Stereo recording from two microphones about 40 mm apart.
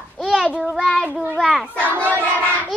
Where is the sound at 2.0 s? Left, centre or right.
Right.